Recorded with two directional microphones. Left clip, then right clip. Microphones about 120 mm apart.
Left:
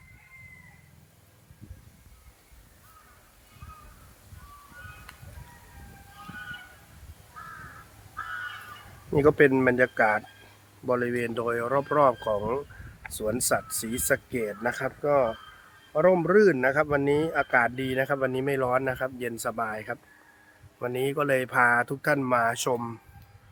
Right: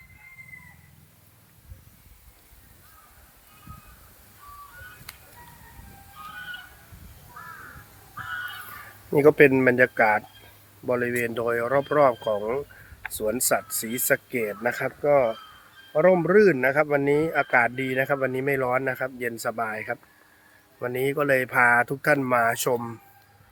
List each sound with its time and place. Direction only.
5.1 s music: 45° right (ahead or behind)
9.0 s speech: 15° right (ahead or behind)
13.1 s speech: 15° right (ahead or behind)